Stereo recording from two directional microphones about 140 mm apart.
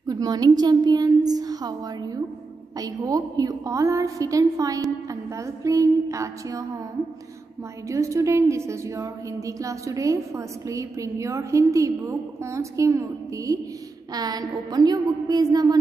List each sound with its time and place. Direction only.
0.0 s a woman's voice: 25° right (ahead or behind)
7.9 s a woman's voice: 20° right (ahead or behind)